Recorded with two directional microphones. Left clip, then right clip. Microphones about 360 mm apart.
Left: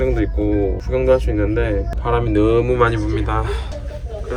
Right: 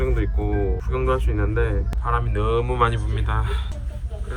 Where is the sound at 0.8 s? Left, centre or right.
Centre.